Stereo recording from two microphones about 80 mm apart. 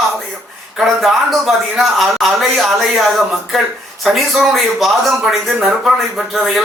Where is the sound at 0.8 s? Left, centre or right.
Centre.